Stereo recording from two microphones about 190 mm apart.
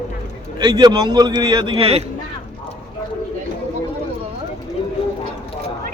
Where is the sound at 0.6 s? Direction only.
25° right (ahead or behind).